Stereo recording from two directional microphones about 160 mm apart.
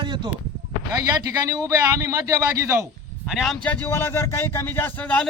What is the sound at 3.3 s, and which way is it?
Speech, centre (ahead or behind).